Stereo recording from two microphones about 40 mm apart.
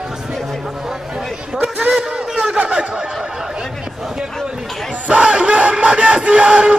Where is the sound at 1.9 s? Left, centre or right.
Centre.